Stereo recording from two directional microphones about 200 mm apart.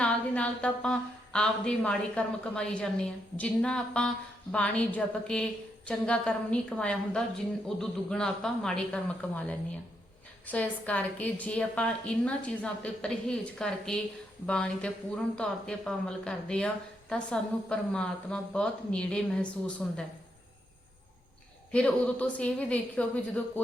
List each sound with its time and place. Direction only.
0.0 s speech: 5° left (ahead or behind)
21.7 s a woman's voice: 5° left (ahead or behind)